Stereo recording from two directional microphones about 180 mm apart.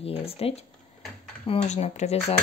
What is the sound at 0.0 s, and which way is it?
Speech, 35° left (ahead or behind).